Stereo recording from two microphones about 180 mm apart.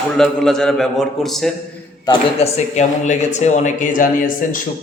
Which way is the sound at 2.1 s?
35° left (ahead or behind).